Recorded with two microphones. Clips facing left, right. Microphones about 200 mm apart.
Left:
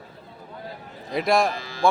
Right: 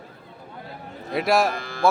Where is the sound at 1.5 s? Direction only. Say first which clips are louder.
Right 2 dB; 55° right (ahead or behind).